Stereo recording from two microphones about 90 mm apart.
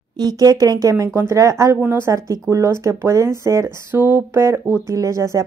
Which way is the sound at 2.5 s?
35° right (ahead or behind).